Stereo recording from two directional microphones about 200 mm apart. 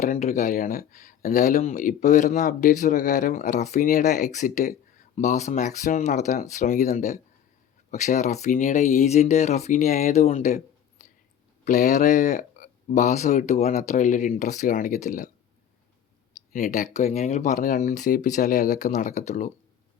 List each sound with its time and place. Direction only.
0.0 s speech: 40° left (ahead or behind)
16.5 s speech: 40° left (ahead or behind)